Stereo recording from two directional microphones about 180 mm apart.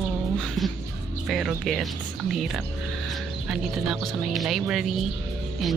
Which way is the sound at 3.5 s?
Centre (ahead or behind).